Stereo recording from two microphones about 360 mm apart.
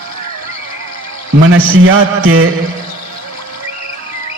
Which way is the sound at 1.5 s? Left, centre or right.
Right.